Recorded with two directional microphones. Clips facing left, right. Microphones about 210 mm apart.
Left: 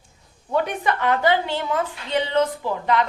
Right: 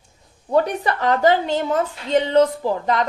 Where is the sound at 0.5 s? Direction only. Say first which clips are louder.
Right 3 dB; 40° right (ahead or behind).